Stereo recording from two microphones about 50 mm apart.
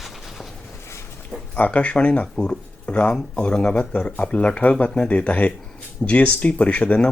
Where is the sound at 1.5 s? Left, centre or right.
Left.